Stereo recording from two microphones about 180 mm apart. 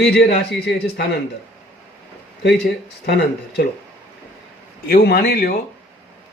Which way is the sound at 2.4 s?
70° left (ahead or behind).